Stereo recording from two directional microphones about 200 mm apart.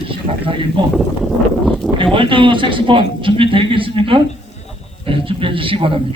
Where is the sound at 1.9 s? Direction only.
25° right (ahead or behind).